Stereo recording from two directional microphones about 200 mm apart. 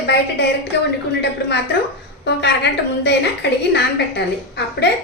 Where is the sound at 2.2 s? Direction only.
60° left (ahead or behind).